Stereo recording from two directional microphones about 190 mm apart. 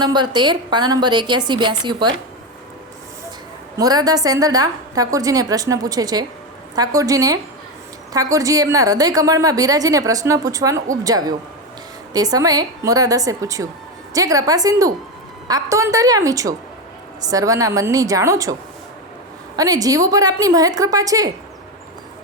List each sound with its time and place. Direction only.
0.0 s a woman's voice: 20° right (ahead or behind)
3.8 s a woman's voice: 20° right (ahead or behind)
19.5 s a woman's voice: 20° right (ahead or behind)